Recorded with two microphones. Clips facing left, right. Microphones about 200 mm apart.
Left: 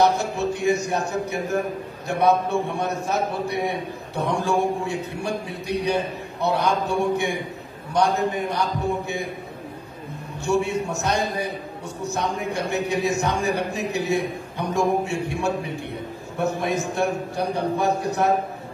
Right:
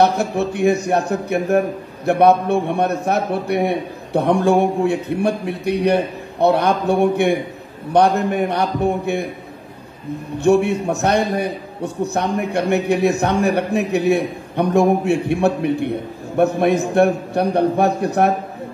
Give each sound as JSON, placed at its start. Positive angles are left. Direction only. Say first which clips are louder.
{"t": 0.6, "sound": "a man's voice", "louder": "right 7 dB", "side_deg": -60}
{"t": 10.4, "sound": "a man's voice", "louder": "right 7 dB", "side_deg": -60}